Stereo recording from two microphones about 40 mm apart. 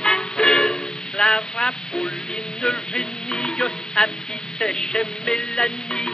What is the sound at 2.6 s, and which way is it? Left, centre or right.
Music, centre.